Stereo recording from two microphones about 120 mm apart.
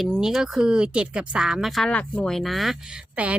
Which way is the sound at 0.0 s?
Centre (ahead or behind).